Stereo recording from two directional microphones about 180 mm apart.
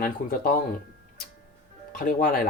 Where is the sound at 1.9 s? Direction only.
50° left (ahead or behind).